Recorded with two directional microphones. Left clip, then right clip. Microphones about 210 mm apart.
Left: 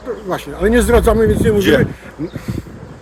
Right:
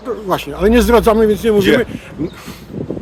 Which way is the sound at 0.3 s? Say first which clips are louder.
Right 2 dB; 20° right (ahead or behind).